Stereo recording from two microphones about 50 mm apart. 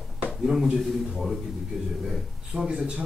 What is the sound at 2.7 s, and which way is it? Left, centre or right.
Speech, right.